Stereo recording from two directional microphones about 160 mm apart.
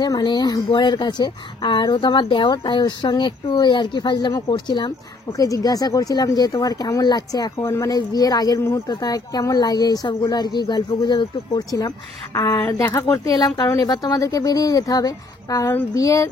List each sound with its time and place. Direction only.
0.0 s speech: 25° left (ahead or behind)
7.6 s speech: 15° left (ahead or behind)